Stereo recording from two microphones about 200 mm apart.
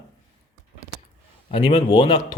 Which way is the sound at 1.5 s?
25° left (ahead or behind).